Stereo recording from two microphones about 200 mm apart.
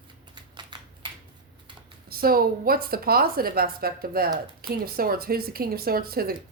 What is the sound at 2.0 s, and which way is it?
A woman's voice, 45° right (ahead or behind).